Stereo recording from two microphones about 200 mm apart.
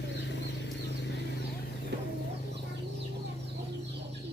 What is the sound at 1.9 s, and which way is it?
Chicken, 55° right (ahead or behind).